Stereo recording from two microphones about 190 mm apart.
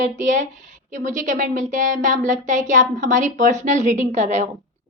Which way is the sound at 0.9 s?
40° right (ahead or behind).